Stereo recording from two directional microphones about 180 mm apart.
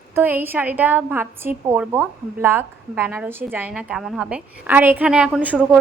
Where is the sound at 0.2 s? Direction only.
10° right (ahead or behind).